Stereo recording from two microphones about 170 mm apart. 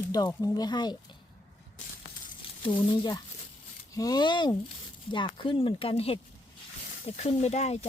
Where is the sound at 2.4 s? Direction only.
30° left (ahead or behind).